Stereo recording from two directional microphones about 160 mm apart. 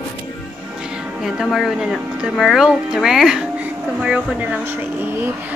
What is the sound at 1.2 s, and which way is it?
Speech, centre (ahead or behind).